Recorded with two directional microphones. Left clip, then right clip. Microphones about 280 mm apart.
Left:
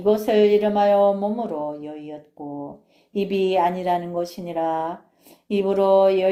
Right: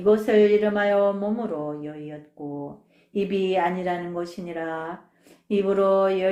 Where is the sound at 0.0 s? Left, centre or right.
Centre.